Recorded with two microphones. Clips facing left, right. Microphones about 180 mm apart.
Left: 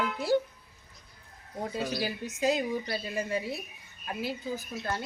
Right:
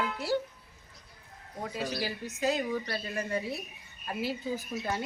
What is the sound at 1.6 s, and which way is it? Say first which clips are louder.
Speech: left 2 dB; 25° left (ahead or behind).